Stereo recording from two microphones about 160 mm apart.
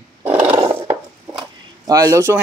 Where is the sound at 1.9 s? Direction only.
20° right (ahead or behind).